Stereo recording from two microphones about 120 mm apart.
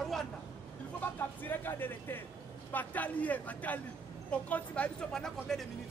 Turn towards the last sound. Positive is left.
turn(degrees=5)  # may be behind; listen again after turning